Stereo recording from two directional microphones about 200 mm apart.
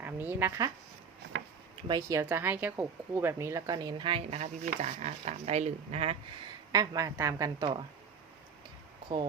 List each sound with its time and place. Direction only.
0.0 s a woman's voice: 10° right (ahead or behind)
1.9 s speech: 15° right (ahead or behind); by 6.1 s 30° right (ahead or behind)
6.7 s a woman's voice: 15° right (ahead or behind)